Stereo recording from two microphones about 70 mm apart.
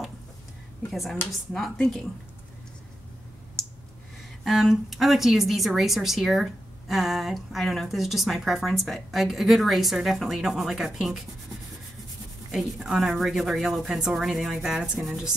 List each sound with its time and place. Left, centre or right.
1.5 s a woman's voice: centre
4.5 s a woman's voice: centre
12.4 s a woman's voice: centre